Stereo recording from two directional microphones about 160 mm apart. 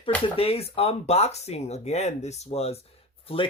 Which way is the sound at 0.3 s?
40° left (ahead or behind).